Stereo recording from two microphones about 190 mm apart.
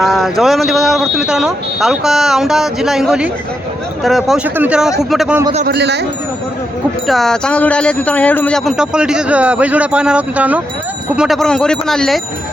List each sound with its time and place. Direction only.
0.0 s speech: centre (ahead or behind)
5.6 s speech: 60° right (ahead or behind)
7.1 s speech: centre (ahead or behind)